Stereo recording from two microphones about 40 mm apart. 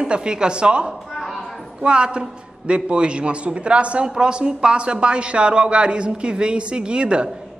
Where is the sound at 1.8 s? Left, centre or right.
Right.